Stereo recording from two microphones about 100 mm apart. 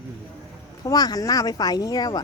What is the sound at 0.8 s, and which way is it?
Speech, 40° left (ahead or behind).